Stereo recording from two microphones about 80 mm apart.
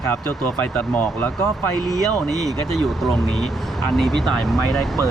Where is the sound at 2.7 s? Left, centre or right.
Centre.